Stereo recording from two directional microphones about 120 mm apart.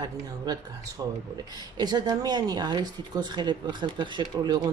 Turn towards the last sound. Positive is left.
turn(degrees=-40)  # may be behind; listen again after turning